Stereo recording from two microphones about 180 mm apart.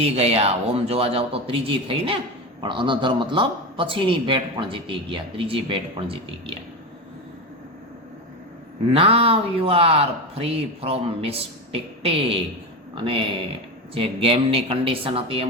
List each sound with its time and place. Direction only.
0.0 s a man's voice: 35° right (ahead or behind)
8.9 s a man's voice: 35° right (ahead or behind)
13.9 s a man's voice: 30° right (ahead or behind)